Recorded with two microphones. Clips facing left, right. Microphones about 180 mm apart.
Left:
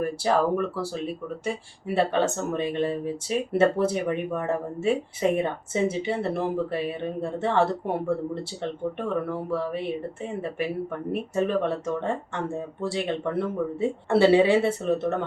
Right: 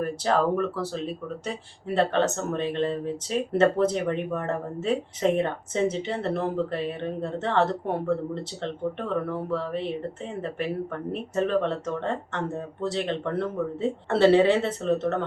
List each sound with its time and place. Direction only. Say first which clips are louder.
0.0 s speech: left 1 dB; 10° left (ahead or behind)